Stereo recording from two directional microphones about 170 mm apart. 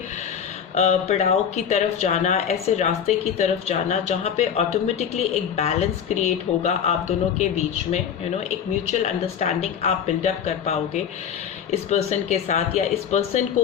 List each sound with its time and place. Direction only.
0.8 s speech: 40° left (ahead or behind)